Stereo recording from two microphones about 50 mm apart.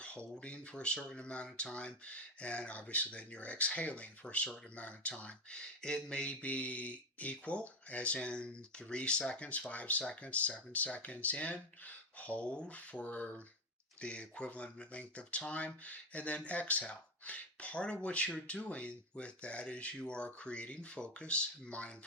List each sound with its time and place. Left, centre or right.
0.0 s speech: left